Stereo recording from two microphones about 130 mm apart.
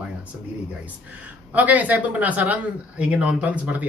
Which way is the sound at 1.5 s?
10° right (ahead or behind).